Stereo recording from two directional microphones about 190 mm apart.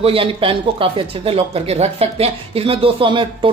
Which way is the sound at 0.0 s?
30° right (ahead or behind).